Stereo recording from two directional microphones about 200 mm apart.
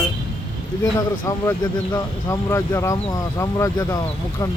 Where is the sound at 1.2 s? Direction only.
20° left (ahead or behind).